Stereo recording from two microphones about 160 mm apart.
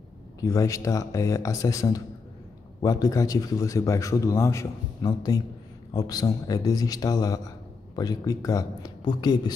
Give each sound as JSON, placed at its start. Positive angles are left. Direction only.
{"t": 0.4, "sound": "a man's voice", "side_deg": 20}